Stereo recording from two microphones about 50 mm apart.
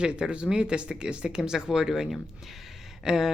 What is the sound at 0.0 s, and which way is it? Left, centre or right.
Speech, right.